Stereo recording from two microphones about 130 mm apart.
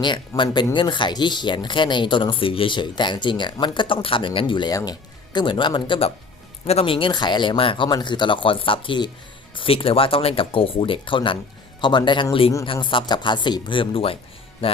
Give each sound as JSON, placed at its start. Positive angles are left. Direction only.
{"t": 0.0, "sound": "speech", "side_deg": 35}
{"t": 14.6, "sound": "music", "side_deg": 45}